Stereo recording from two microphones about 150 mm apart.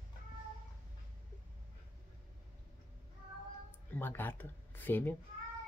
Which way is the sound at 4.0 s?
15° left (ahead or behind).